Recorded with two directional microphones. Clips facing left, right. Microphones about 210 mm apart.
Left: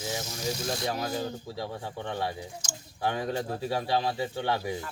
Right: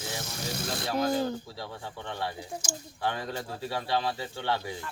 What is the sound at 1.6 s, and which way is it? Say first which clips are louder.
Speech: left 4 dB; 15° left (ahead or behind).